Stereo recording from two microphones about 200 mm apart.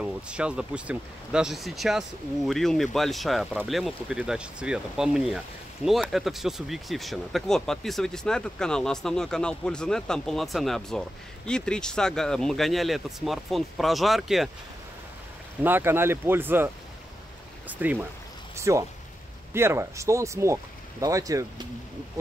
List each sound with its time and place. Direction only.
0.0 s speech: 5° right (ahead or behind)
15.6 s speech: 10° right (ahead or behind)